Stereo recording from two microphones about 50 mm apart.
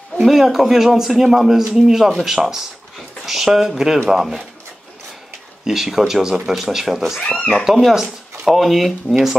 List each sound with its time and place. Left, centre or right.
0.2 s a man's voice: centre
5.7 s a man's voice: centre
7.2 s speech: left
7.7 s speech: centre